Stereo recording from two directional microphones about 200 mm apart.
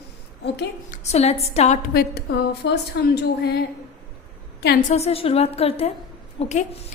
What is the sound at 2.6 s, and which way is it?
Speech, 65° left (ahead or behind).